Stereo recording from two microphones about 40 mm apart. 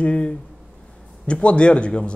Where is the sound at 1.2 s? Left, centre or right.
Left.